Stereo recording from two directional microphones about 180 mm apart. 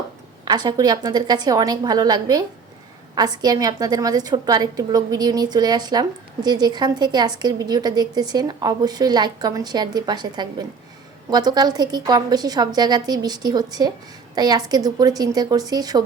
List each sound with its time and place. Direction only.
0.4 s a woman's voice: 25° right (ahead or behind)